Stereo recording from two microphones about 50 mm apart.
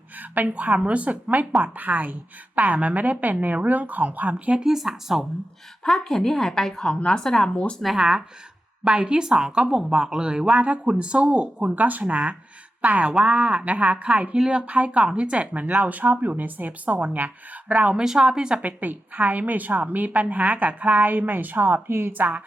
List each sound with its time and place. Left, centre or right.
0.2 s a woman's voice: right
0.5 s a woman's voice: right
4.6 s a woman's voice: centre
5.8 s a woman's voice: centre
7.5 s speech: left
7.9 s a woman's voice: centre
11.7 s a woman's voice: right
17.9 s a woman's voice: centre
18.6 s a woman's voice: right